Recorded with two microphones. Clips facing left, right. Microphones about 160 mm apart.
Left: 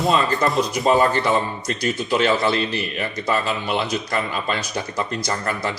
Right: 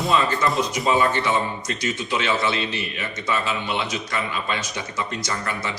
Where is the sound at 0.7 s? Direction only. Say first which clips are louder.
Left 3 dB; 45° left (ahead or behind).